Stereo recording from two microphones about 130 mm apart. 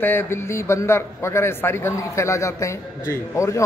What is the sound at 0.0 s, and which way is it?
A man's voice, 15° left (ahead or behind).